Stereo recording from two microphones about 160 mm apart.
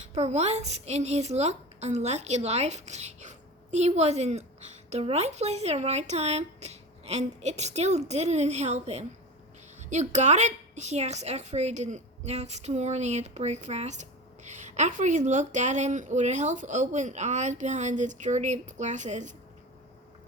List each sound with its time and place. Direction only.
0.1 s a woman's voice: 45° right (ahead or behind)